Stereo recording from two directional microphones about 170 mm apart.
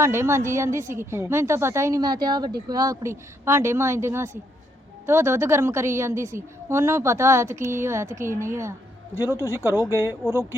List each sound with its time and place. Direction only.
0.0 s a woman's voice: 15° right (ahead or behind)
9.2 s speech: 15° left (ahead or behind)